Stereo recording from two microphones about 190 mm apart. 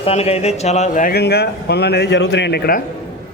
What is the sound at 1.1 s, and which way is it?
Speech, 60° left (ahead or behind).